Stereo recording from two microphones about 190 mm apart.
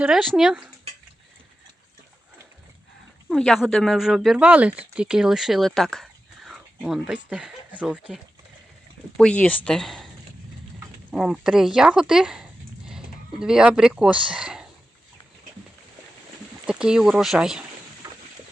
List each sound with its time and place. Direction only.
0.0 s speech: centre (ahead or behind)
3.2 s speech: centre (ahead or behind)
16.6 s speech: 5° right (ahead or behind)
18.0 s a sound: 15° right (ahead or behind)